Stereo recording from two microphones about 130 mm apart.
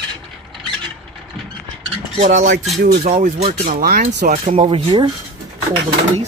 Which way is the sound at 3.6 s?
90° right.